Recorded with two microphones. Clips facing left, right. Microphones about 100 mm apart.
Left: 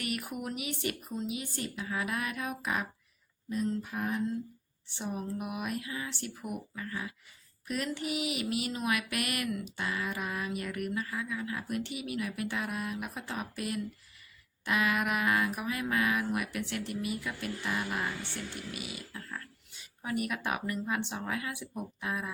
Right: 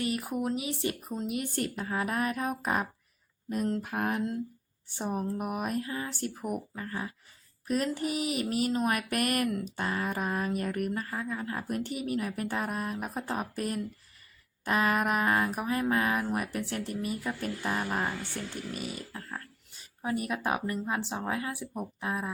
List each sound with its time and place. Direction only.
0.0 s speech: 30° right (ahead or behind)
3.5 s a sound: 60° right (ahead or behind)
4.9 s speech: 45° right (ahead or behind)